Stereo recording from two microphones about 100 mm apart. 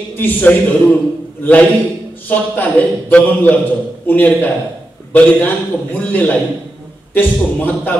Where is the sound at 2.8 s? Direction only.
20° left (ahead or behind).